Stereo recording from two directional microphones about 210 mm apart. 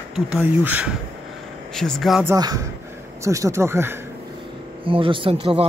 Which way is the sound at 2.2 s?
15° right (ahead or behind).